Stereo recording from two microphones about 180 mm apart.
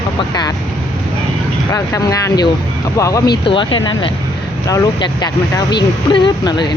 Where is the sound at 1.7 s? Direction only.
20° left (ahead or behind).